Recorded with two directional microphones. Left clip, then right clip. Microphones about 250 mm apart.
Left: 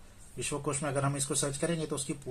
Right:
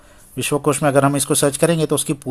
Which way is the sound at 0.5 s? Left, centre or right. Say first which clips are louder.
Right 18 dB; right.